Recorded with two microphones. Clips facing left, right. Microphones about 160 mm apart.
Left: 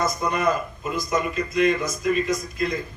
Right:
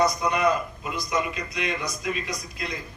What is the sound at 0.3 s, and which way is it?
A man's voice, 50° left (ahead or behind).